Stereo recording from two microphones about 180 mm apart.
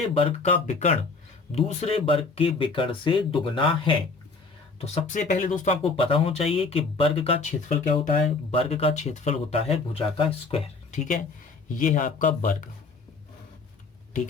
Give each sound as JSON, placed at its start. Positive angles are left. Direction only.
{"t": 0.1, "sound": "speech", "side_deg": 30}
{"t": 4.8, "sound": "speech", "side_deg": 40}
{"t": 8.4, "sound": "speech", "side_deg": 30}
{"t": 11.7, "sound": "speech", "side_deg": 45}